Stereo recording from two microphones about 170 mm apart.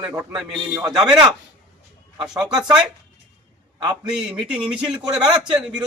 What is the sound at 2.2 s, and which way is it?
Speech, 20° right (ahead or behind).